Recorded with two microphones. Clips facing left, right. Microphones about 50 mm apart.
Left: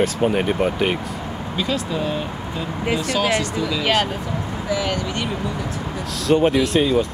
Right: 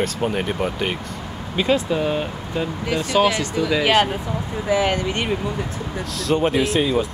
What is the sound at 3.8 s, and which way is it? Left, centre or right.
Speech, centre.